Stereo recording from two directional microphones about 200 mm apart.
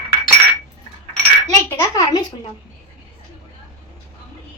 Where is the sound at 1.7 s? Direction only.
15° left (ahead or behind).